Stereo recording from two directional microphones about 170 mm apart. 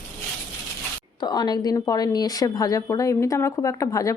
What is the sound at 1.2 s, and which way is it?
Speech, 25° left (ahead or behind).